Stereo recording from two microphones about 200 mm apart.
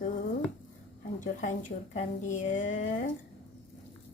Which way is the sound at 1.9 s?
40° left (ahead or behind).